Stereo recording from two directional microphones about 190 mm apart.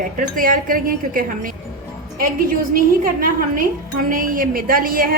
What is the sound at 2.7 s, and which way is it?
A woman's voice, 50° right (ahead or behind).